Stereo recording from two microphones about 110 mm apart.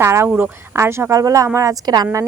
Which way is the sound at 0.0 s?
25° right (ahead or behind).